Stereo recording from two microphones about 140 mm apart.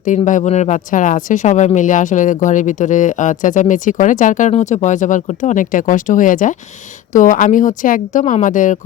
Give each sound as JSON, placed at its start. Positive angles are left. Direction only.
{"t": 0.0, "sound": "speech", "side_deg": 65}